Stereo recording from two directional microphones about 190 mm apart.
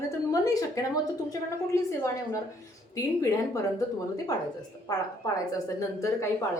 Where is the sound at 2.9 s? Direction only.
15° left (ahead or behind).